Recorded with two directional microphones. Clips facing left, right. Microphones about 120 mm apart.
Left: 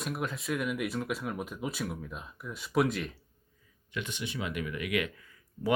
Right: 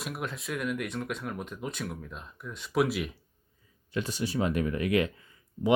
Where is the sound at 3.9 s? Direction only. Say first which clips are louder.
Right 6 dB; 35° right (ahead or behind).